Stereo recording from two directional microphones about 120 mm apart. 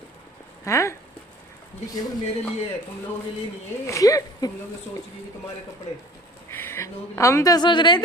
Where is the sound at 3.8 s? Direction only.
25° left (ahead or behind).